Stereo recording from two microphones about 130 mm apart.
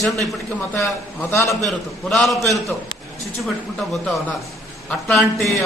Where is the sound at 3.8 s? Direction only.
Centre (ahead or behind).